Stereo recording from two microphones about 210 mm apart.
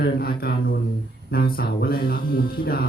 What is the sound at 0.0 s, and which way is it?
A man's voice, 50° left (ahead or behind).